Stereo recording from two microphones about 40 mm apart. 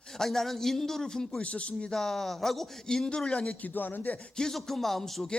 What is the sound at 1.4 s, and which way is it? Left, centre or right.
Speech, left.